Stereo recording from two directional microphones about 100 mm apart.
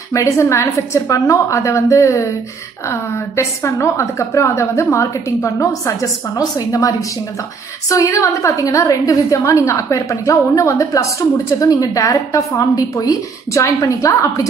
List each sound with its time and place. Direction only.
0.1 s a woman's voice: 30° left (ahead or behind)